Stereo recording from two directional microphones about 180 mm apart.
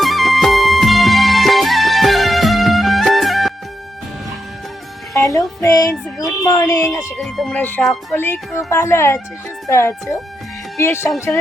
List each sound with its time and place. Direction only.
0.0 s music: centre (ahead or behind)
5.1 s a child's voice: 15° left (ahead or behind)
7.2 s speech: centre (ahead or behind)